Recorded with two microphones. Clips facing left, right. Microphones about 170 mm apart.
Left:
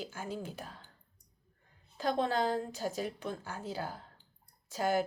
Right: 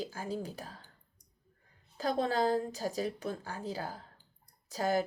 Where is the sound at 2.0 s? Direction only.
40° right (ahead or behind).